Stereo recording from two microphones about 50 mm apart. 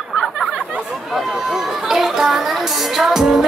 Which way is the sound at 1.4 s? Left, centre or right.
Centre.